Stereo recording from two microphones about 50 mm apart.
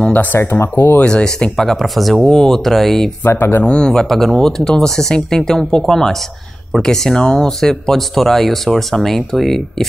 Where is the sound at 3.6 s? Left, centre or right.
Centre.